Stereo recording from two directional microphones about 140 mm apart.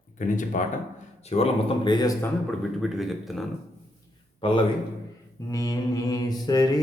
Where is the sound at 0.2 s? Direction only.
70° left (ahead or behind).